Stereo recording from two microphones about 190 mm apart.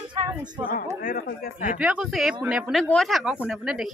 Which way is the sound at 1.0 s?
50° left (ahead or behind).